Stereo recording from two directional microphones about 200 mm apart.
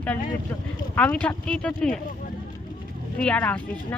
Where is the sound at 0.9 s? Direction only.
5° left (ahead or behind).